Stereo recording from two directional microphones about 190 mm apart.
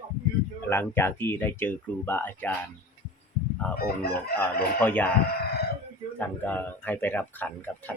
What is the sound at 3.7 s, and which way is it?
Chicken, 55° left (ahead or behind).